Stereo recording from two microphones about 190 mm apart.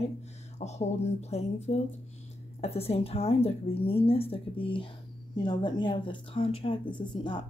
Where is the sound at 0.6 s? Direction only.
35° left (ahead or behind).